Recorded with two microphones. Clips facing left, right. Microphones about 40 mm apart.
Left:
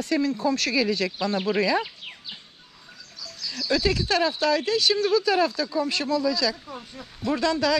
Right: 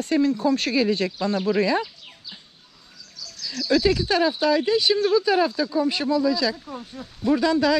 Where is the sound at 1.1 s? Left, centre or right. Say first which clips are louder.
Right 2 dB; left.